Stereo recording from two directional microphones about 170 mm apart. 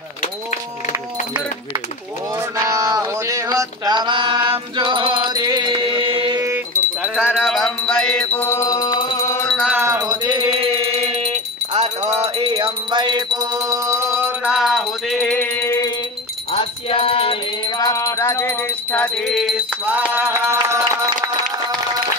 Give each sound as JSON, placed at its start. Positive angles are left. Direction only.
{"t": 2.3, "sound": "a sound", "side_deg": -20}
{"t": 6.4, "sound": "a sound", "side_deg": -15}
{"t": 7.3, "sound": "music", "side_deg": 0}
{"t": 9.5, "sound": "music", "side_deg": -5}
{"t": 9.8, "sound": "mantra", "side_deg": -20}
{"t": 11.7, "sound": "music", "side_deg": -40}
{"t": 14.4, "sound": "music", "side_deg": -5}
{"t": 15.1, "sound": "music", "side_deg": 10}
{"t": 16.5, "sound": "music", "side_deg": 35}